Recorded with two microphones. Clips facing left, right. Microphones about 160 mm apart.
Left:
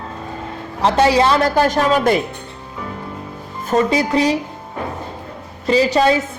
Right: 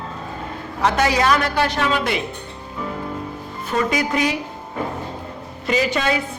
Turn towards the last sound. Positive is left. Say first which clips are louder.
# left 6 dB
turn(degrees=35)  # may be behind; listen again after turning